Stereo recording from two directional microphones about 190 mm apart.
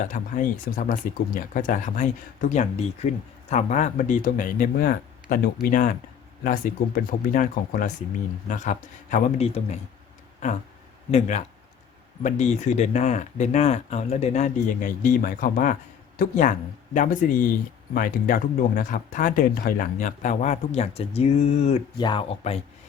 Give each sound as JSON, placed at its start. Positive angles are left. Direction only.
{"t": 0.0, "sound": "speech", "side_deg": 45}
{"t": 11.1, "sound": "speech", "side_deg": 35}